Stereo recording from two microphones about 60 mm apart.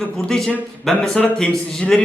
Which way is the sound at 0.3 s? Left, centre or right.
Centre.